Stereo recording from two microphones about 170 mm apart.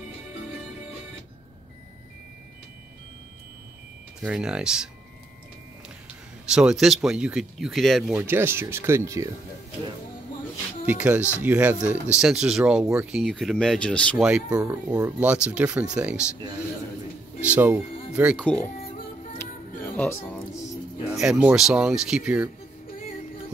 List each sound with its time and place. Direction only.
4.2 s speech: 5° right (ahead or behind)
6.5 s speech: 5° right (ahead or behind)
8.2 s speech: 15° right (ahead or behind)
10.9 s speech: 10° right (ahead or behind)
14.2 s speech: 5° right (ahead or behind)
14.6 s speech: 20° right (ahead or behind)
15.1 s speech: 5° right (ahead or behind)
17.5 s speech: 10° right (ahead or behind)
18.4 s speech: 10° left (ahead or behind)
21.1 s speech: 5° right (ahead or behind)